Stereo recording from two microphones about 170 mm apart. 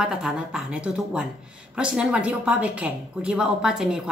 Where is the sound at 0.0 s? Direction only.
5° right (ahead or behind).